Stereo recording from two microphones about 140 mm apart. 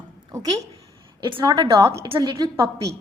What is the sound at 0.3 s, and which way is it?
A woman's voice, 25° right (ahead or behind).